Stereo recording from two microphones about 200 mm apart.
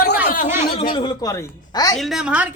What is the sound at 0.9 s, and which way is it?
Speech, 20° left (ahead or behind).